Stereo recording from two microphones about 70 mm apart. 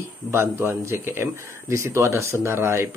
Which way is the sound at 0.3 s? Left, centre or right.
Right.